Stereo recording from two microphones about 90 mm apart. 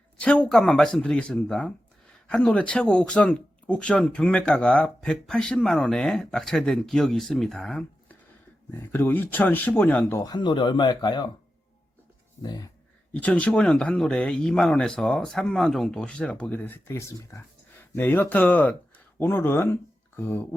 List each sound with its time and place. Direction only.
0.2 s speech: 10° left (ahead or behind)
8.7 s speech: 20° left (ahead or behind)
10.3 s speech: 60° left (ahead or behind)
12.4 s speech: 50° left (ahead or behind)
13.1 s speech: 15° left (ahead or behind); by 17.4 s 35° left (ahead or behind)
17.7 s speech: 20° left (ahead or behind)